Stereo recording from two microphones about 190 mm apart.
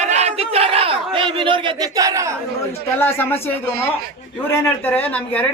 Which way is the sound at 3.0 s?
10° left (ahead or behind).